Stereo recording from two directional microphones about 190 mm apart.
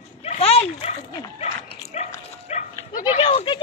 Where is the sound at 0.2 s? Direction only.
35° left (ahead or behind).